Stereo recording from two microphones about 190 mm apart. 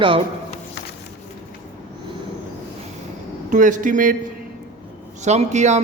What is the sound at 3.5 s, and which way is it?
Speech, 45° right (ahead or behind).